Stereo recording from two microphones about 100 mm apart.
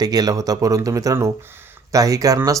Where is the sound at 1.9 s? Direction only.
35° right (ahead or behind).